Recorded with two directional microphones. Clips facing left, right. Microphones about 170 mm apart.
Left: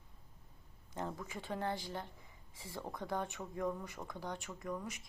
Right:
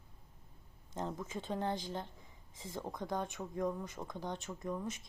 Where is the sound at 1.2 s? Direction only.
20° right (ahead or behind).